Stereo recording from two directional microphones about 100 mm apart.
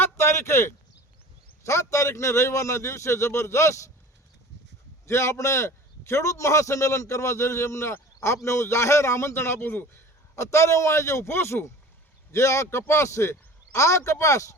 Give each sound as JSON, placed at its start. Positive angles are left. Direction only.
{"t": 0.0, "sound": "a sound", "side_deg": 25}
{"t": 1.6, "sound": "a man's voice", "side_deg": 30}
{"t": 5.0, "sound": "a man's voice", "side_deg": 30}